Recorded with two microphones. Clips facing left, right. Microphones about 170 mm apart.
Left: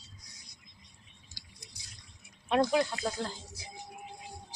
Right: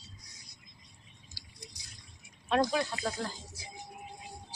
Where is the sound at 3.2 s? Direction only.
20° left (ahead or behind).